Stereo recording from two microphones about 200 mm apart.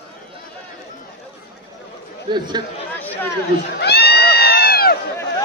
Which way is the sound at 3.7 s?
55° left (ahead or behind).